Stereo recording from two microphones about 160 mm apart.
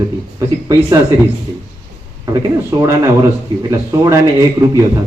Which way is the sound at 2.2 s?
20° right (ahead or behind).